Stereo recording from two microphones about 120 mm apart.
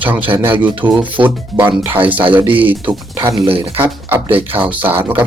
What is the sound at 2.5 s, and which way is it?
Speech, 45° right (ahead or behind).